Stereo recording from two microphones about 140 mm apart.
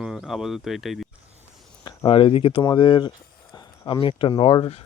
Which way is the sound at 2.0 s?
40° left (ahead or behind).